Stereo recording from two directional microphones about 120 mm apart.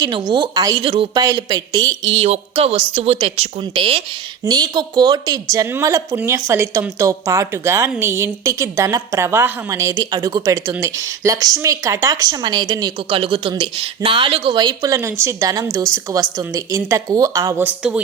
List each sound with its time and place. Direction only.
0.0 s speech: 35° right (ahead or behind)
1.2 s speech: 25° right (ahead or behind)
2.2 s a woman's voice: 60° right (ahead or behind)
4.4 s speech: 35° right (ahead or behind)
13.1 s speech: 50° right (ahead or behind); by 17.6 s 30° right (ahead or behind)
17.6 s speech: 10° right (ahead or behind)